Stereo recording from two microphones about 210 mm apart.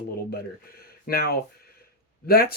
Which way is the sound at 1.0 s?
45° left (ahead or behind).